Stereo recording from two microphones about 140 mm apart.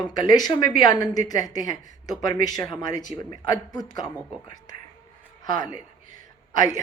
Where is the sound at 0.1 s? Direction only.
30° left (ahead or behind).